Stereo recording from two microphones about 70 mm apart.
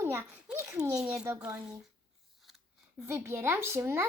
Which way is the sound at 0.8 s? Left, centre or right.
Right.